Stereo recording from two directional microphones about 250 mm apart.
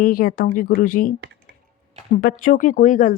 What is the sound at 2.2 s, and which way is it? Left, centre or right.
Speech, left.